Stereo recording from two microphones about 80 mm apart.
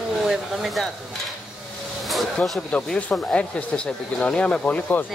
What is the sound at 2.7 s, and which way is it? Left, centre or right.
Speech, centre.